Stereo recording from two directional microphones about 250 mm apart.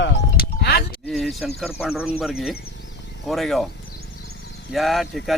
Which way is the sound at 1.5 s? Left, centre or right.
Centre.